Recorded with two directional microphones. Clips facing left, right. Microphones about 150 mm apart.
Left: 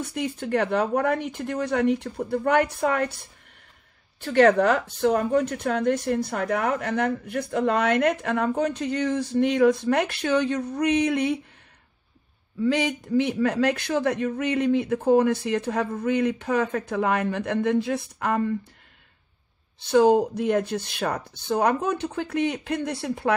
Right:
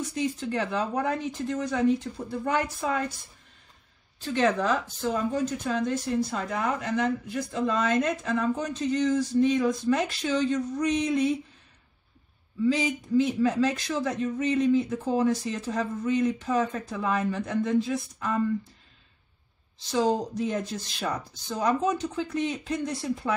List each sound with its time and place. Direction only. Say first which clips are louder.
0.0 s speech: even; 60° left (ahead or behind)
4.2 s speech: left 7 dB; 65° left (ahead or behind)
12.6 s speech: left 2 dB; 65° left (ahead or behind)
19.8 s speech: left 7 dB; 60° left (ahead or behind)